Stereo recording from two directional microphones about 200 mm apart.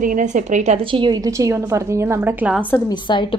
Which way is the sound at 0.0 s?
40° right (ahead or behind).